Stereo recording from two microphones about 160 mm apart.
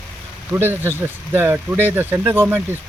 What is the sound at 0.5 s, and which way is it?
Speech, 15° right (ahead or behind).